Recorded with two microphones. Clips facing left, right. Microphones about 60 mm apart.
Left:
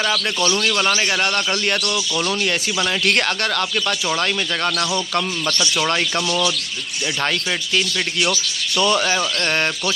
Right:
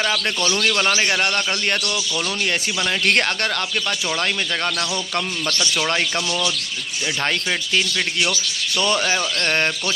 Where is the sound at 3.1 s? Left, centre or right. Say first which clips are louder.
Even; centre.